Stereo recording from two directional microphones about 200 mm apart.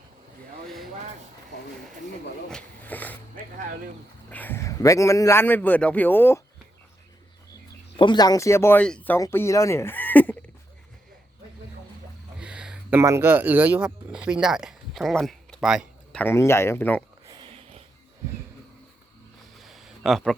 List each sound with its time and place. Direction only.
2.5 s speech: 5° left (ahead or behind)
4.3 s speech: 10° left (ahead or behind)
7.9 s speech: 20° left (ahead or behind)
12.4 s speech: 5° right (ahead or behind)
16.2 s speech: 15° left (ahead or behind)
17.2 s a sound: 25° right (ahead or behind)
19.5 s a sound: centre (ahead or behind)